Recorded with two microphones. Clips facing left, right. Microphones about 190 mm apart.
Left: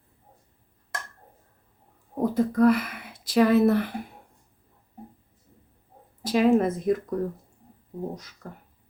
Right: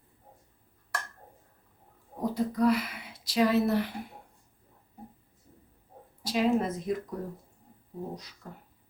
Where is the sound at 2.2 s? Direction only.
55° left (ahead or behind).